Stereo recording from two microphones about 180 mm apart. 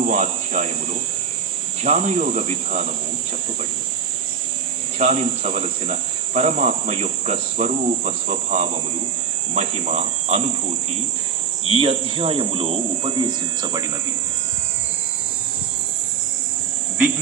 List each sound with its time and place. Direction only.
0.0 s cricket: 45° right (ahead or behind)
1.8 s speech: 40° right (ahead or behind)
4.9 s speech: 40° right (ahead or behind)
11.6 s speech: 35° right (ahead or behind)